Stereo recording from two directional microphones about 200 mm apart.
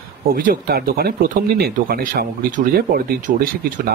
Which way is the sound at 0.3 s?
45° right (ahead or behind).